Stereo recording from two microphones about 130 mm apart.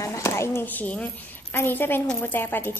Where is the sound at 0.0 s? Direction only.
20° left (ahead or behind).